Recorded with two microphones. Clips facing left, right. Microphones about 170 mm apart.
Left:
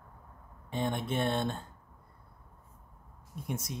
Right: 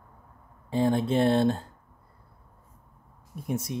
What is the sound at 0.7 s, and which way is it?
Speech, 30° right (ahead or behind).